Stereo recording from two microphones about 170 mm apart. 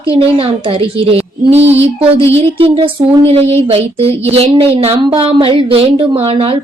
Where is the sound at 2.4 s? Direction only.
30° right (ahead or behind).